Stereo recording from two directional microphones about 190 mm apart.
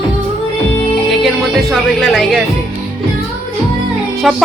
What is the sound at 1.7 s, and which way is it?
Speech, centre (ahead or behind).